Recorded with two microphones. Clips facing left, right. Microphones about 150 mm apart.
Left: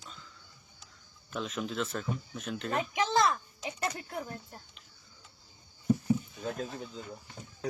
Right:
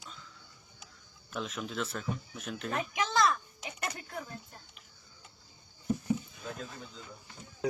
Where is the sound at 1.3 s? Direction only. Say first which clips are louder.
Left 2 dB; centre (ahead or behind).